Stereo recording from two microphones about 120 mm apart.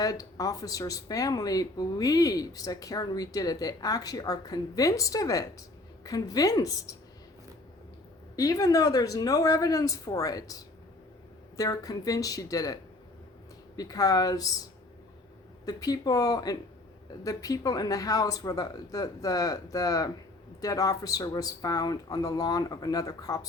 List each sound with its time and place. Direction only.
0.0 s speech: 30° left (ahead or behind)
8.4 s speech: 30° left (ahead or behind)
15.6 s speech: 30° left (ahead or behind)